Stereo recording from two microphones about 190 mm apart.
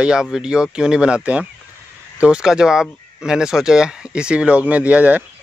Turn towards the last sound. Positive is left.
turn(degrees=-10)  # may be behind; listen again after turning